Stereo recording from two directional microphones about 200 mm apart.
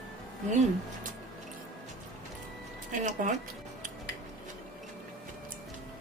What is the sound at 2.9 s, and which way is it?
Speech, 40° right (ahead or behind).